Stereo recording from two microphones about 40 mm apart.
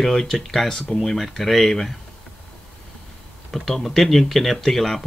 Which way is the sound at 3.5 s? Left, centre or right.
Centre.